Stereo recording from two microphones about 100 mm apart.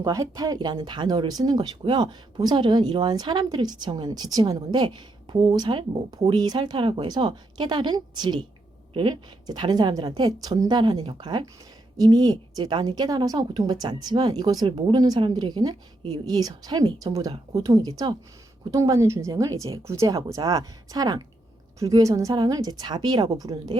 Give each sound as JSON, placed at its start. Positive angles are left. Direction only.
{"t": 0.0, "sound": "speech", "side_deg": -35}
{"t": 8.9, "sound": "a woman's voice", "side_deg": -60}
{"t": 9.5, "sound": "a woman's voice", "side_deg": -45}